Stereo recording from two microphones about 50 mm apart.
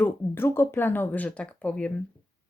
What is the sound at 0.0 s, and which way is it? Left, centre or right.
Speech, left.